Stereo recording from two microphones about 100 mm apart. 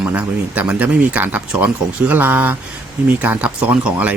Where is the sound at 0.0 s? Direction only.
15° right (ahead or behind).